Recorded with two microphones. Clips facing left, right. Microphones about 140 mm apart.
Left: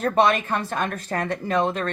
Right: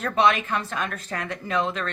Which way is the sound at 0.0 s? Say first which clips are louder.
Left 2 dB; 45° left (ahead or behind).